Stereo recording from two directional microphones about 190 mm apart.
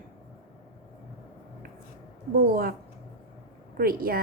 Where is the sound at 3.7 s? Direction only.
50° right (ahead or behind).